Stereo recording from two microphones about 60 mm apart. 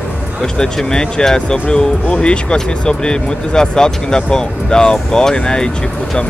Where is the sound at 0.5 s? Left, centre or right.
Centre.